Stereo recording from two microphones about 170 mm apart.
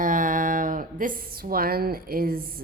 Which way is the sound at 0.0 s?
50° right (ahead or behind).